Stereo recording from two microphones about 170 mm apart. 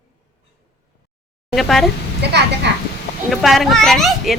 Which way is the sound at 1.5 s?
Centre (ahead or behind).